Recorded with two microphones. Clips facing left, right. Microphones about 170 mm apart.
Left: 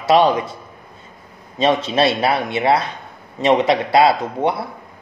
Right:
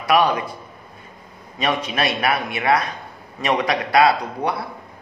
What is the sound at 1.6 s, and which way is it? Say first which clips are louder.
A man's voice: left 6 dB; 25° left (ahead or behind).